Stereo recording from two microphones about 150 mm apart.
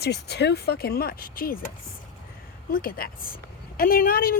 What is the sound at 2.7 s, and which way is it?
Speech, 70° left (ahead or behind).